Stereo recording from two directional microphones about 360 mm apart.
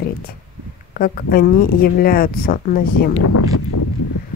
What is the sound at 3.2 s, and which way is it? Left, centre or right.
Speech, left.